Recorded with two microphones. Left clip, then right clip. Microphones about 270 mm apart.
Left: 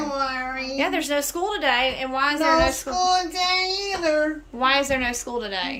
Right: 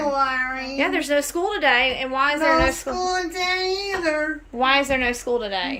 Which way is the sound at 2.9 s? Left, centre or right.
Left.